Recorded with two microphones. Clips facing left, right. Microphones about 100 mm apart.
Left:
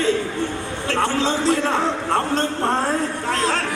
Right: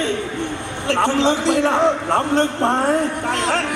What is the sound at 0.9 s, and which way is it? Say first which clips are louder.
A man's voice: right 4 dB; 20° right (ahead or behind).